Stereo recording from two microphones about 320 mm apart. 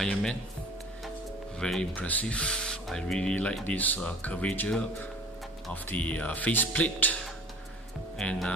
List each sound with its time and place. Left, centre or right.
0.0 s speech: centre
1.6 s speech: centre
8.2 s speech: centre